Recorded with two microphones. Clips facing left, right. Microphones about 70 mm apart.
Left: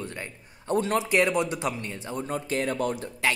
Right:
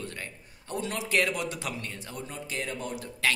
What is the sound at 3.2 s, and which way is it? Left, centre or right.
Speech, centre.